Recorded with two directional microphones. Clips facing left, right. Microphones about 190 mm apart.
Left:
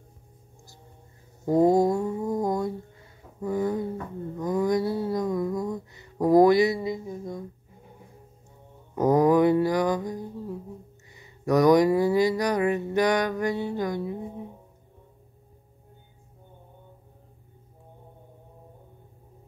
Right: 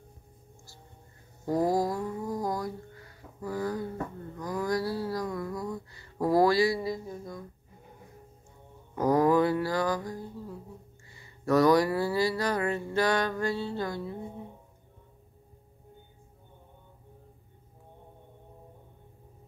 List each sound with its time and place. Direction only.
1.4 s mantra: 20° left (ahead or behind)
8.9 s mantra: 20° left (ahead or behind)